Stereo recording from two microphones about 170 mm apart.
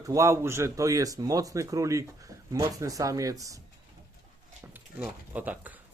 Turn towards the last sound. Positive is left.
turn(degrees=-10)  # may be behind; listen again after turning